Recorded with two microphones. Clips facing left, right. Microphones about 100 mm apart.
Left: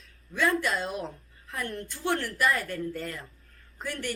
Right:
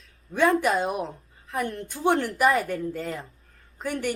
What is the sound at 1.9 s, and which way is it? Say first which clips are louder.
Speech: right 7 dB; 15° right (ahead or behind).